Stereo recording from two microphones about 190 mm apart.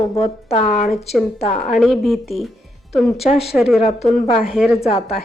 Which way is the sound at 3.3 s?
30° left (ahead or behind).